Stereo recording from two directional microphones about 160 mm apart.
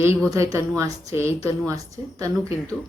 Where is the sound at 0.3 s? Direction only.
20° right (ahead or behind).